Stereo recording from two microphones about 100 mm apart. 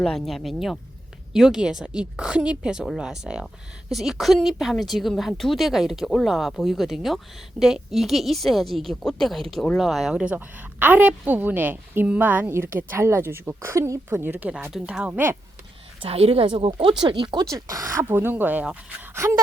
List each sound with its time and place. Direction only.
0.0 s a woman's voice: 5° left (ahead or behind)
16.0 s speech: 80° right; by 16.9 s 60° right (ahead or behind)
17.0 s speech: 50° right (ahead or behind)
17.4 s speech: 35° right (ahead or behind)
18.1 s a woman's voice: 20° right (ahead or behind)
19.1 s speech: 30° right (ahead or behind)